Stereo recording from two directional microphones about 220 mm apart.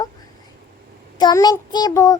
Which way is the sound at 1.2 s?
20° left (ahead or behind).